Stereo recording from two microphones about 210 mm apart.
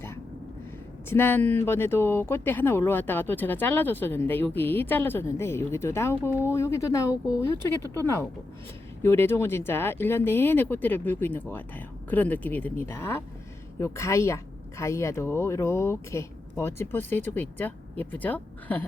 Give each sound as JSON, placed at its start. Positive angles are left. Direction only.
{"t": 1.1, "sound": "speech", "side_deg": 10}
{"t": 7.1, "sound": "speech", "side_deg": -5}
{"t": 7.6, "sound": "speech", "side_deg": 10}